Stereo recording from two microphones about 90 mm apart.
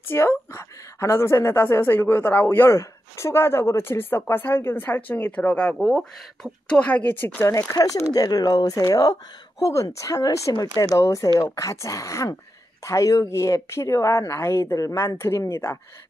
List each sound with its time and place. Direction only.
0.0 s a woman's voice: 25° left (ahead or behind)
5.8 s speech: centre (ahead or behind)
6.7 s a woman's voice: 15° left (ahead or behind)
7.4 s speech: 35° left (ahead or behind)
10.5 s speech: 50° left (ahead or behind); by 15.8 s 30° left (ahead or behind)